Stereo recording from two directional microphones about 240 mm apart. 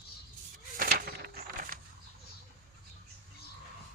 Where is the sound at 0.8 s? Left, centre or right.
Right.